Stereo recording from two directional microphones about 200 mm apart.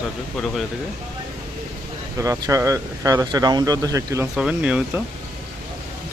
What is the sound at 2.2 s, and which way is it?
Speech, 15° right (ahead or behind).